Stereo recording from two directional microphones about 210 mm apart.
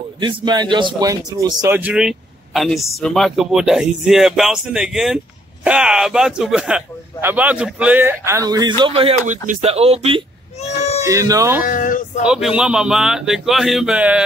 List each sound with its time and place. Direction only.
0.2 s speech: 20° right (ahead or behind)
10.6 s baby cry: 30° left (ahead or behind)
11.1 s speech: 15° right (ahead or behind)
11.6 s a sound: 40° left (ahead or behind)
12.2 s speech: 5° right (ahead or behind)